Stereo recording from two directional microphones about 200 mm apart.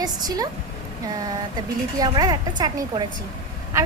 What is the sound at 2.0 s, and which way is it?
A woman's voice, 20° right (ahead or behind).